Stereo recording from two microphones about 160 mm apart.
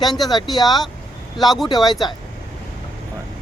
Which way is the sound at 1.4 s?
Centre (ahead or behind).